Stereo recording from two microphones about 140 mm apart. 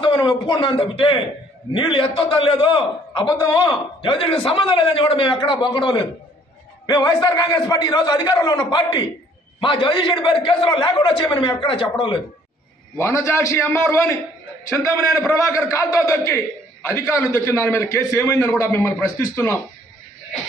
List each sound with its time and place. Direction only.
0.0 s a man's voice: 35° left (ahead or behind)
12.9 s a man's voice: 20° left (ahead or behind)